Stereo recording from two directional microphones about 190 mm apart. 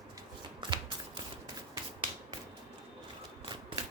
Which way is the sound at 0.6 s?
25° right (ahead or behind).